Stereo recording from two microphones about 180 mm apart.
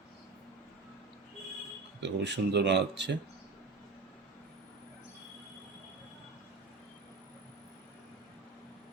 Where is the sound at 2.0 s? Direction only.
75° right (ahead or behind).